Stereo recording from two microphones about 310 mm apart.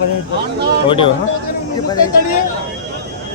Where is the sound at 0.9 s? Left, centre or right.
Centre.